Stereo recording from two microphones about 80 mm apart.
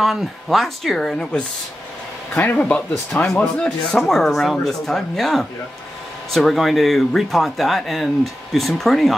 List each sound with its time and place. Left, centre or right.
0.0 s speech: centre; by 3.3 s left
3.6 s speech: centre